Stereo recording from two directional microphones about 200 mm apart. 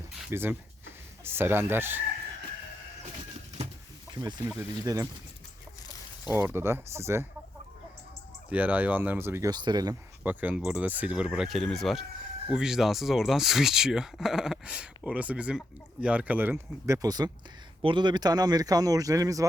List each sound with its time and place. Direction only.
0.3 s speech: 10° right (ahead or behind)
4.1 s speech: 20° right (ahead or behind)
6.3 s speech: 10° right (ahead or behind)
8.4 s speech: 10° right (ahead or behind)
10.2 s speech: 10° right (ahead or behind)